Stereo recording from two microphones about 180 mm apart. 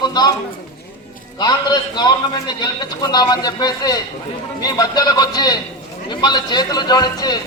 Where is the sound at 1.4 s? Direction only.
25° left (ahead or behind).